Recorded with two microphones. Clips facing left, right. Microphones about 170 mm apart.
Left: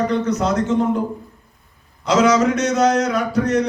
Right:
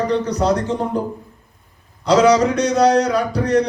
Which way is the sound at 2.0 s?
35° right (ahead or behind).